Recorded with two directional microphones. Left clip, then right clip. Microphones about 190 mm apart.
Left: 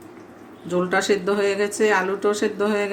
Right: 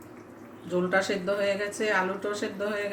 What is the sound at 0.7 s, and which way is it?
Speech, 55° left (ahead or behind).